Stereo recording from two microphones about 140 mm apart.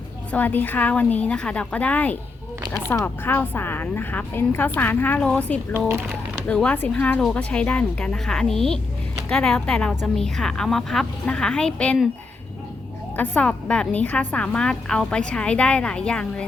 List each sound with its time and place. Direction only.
0.3 s a woman's voice: 10° left (ahead or behind)
5.9 s a sound: 15° right (ahead or behind)
6.5 s a woman's voice: 10° left (ahead or behind)
13.1 s a woman's voice: 10° left (ahead or behind)